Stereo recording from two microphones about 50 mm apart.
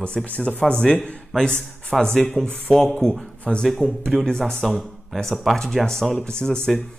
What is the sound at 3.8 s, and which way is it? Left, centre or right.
Speech, left.